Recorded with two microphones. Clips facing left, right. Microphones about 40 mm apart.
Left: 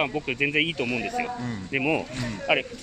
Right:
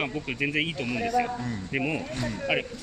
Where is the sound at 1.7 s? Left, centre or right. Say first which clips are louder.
Left 5 dB; centre.